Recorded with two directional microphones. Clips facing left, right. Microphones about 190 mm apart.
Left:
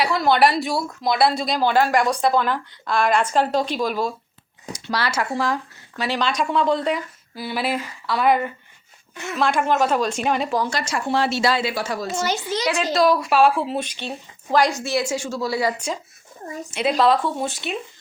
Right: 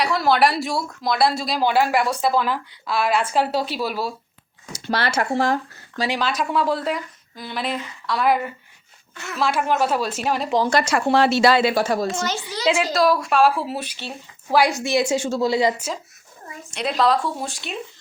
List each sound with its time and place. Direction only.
0.0 s speech: centre (ahead or behind)
4.9 s speech: 55° right (ahead or behind)
6.1 s speech: 5° right (ahead or behind)
9.1 s a woman's voice: 20° left (ahead or behind)
9.4 s speech: 5° right (ahead or behind)
10.7 s speech: 60° right (ahead or behind)
11.7 s a woman's voice: 50° right (ahead or behind)
12.0 s a child's voice: 10° left (ahead or behind)
12.9 s a woman's voice: centre (ahead or behind); by 15.7 s 20° right (ahead or behind)
16.7 s speech: centre (ahead or behind)